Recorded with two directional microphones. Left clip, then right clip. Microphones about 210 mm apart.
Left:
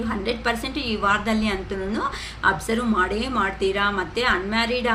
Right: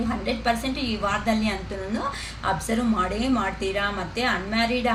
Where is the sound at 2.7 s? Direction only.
50° left (ahead or behind).